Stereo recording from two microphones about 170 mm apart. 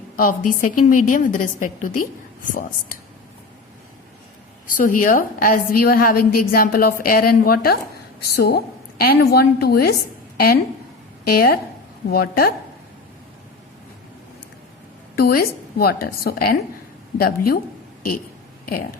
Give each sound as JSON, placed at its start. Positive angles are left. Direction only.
{"t": 0.2, "sound": "a woman's voice", "side_deg": 55}
{"t": 4.7, "sound": "a woman's voice", "side_deg": 50}
{"t": 11.3, "sound": "a woman's voice", "side_deg": 60}
{"t": 15.1, "sound": "a woman's voice", "side_deg": 60}
{"t": 18.7, "sound": "a woman's voice", "side_deg": 60}